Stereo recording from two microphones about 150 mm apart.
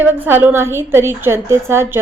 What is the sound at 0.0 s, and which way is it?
A woman's voice, 15° right (ahead or behind).